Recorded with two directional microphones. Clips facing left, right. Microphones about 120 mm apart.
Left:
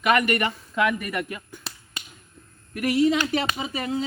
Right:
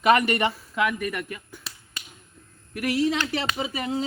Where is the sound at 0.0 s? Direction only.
30° right (ahead or behind).